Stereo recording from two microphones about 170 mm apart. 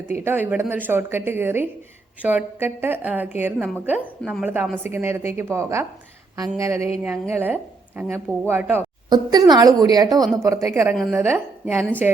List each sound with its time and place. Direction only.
0.1 s speech: 15° right (ahead or behind)
9.0 s a woman's voice: 25° right (ahead or behind)
10.1 s speech: centre (ahead or behind)
10.4 s speech: 20° right (ahead or behind)